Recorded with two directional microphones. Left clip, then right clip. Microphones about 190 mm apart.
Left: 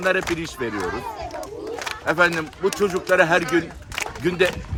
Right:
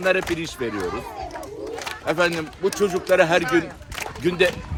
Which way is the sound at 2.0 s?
Centre (ahead or behind).